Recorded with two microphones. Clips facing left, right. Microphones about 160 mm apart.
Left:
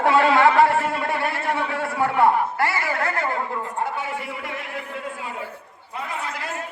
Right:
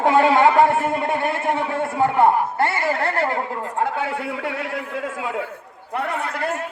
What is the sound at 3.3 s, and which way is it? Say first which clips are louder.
A man's voice: right 2 dB; 65° right (ahead or behind).